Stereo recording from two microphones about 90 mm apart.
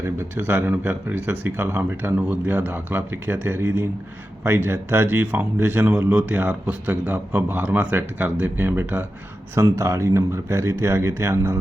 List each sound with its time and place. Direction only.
0.2 s speech: 25° right (ahead or behind)
9.6 s speech: 35° right (ahead or behind)